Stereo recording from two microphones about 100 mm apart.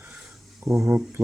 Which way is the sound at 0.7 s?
20° right (ahead or behind).